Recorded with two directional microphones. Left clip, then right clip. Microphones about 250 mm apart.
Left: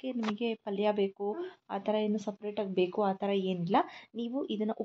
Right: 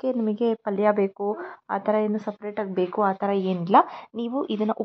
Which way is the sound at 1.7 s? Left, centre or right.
Centre.